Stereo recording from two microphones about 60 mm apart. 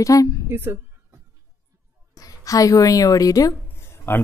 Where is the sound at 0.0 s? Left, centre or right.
Left.